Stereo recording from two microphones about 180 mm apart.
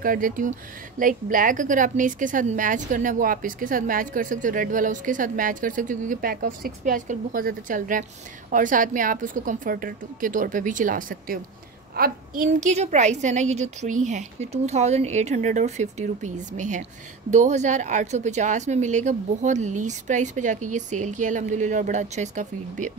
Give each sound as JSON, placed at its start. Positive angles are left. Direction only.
{"t": 0.0, "sound": "a woman's voice", "side_deg": -50}